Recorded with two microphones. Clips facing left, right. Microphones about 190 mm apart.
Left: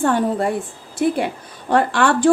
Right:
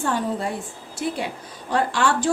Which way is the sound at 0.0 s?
55° left (ahead or behind).